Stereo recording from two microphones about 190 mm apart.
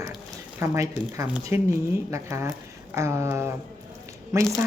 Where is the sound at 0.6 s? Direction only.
15° right (ahead or behind).